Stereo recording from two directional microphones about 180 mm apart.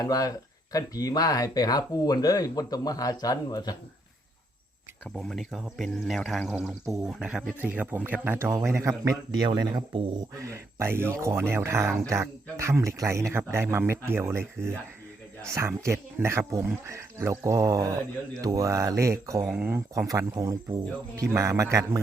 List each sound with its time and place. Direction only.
0.0 s speech: 20° left (ahead or behind)
5.1 s speech: centre (ahead or behind); by 10.2 s 25° right (ahead or behind)
10.3 s speech: 15° right (ahead or behind)
19.5 s speech: centre (ahead or behind)
19.7 s speech: 15° right (ahead or behind)